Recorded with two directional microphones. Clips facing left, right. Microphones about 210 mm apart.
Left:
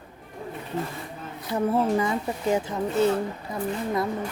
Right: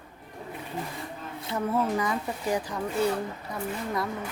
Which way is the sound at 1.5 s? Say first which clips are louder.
Left 4 dB; 30° left (ahead or behind).